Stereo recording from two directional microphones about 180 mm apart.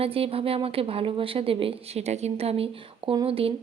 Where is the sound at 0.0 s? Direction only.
30° right (ahead or behind).